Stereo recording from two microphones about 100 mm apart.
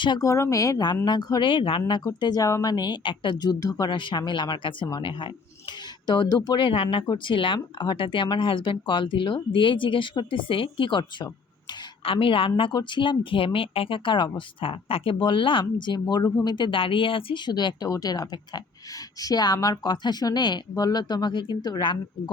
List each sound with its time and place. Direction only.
0.2 s speech: 30° left (ahead or behind); by 1.8 s 60° left (ahead or behind)
1.9 s speech: 45° left (ahead or behind)